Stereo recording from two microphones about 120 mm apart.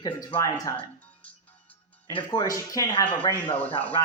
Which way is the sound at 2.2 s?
35° left (ahead or behind).